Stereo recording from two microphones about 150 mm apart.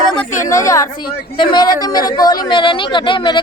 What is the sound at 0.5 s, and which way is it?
Speech, 20° left (ahead or behind).